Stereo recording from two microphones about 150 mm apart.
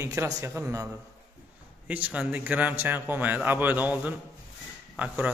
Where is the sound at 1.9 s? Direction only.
10° right (ahead or behind).